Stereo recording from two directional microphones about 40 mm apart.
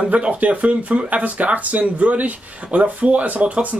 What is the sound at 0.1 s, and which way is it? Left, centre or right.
Speech, right.